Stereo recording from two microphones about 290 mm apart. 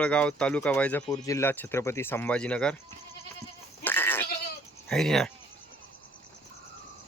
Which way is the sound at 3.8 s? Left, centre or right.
Centre.